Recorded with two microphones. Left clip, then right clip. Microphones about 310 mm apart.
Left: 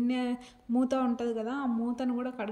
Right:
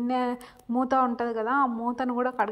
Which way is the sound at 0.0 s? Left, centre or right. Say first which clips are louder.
Right 5 dB; right.